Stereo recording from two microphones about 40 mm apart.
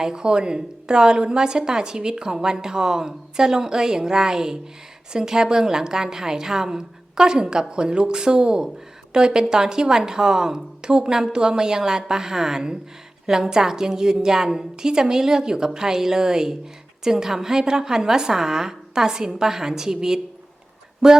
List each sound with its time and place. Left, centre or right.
0.0 s a woman's voice: centre